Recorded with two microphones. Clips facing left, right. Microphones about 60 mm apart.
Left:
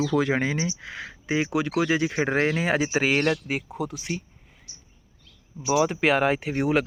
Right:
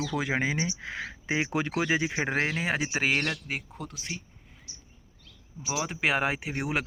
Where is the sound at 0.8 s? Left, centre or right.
Right.